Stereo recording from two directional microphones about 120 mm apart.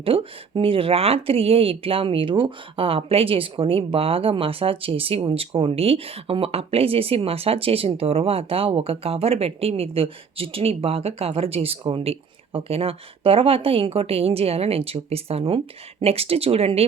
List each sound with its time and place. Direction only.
0.0 s speech: 50° right (ahead or behind)